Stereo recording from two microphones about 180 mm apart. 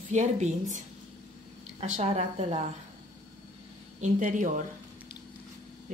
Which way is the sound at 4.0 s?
45° right (ahead or behind).